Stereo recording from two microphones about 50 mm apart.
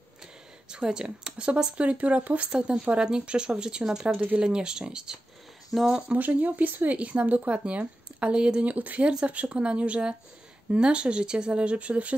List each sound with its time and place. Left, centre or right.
0.7 s speech: centre
6.1 s speech: right; by 8.6 s centre
8.6 s speech: right